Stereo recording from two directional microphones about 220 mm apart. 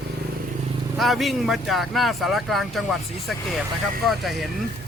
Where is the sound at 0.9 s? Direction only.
Centre (ahead or behind).